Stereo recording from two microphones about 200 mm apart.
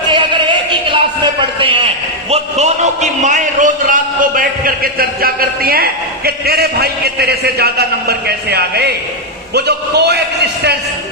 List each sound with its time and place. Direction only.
0.1 s music: 25° right (ahead or behind)
1.4 s a sound: 25° right (ahead or behind)
2.3 s a man's voice: 35° right (ahead or behind); by 10.2 s 55° right (ahead or behind)